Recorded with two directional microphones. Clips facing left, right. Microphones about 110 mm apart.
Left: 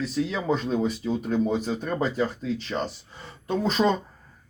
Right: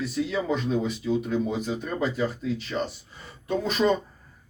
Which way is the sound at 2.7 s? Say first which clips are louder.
Even; 20° left (ahead or behind).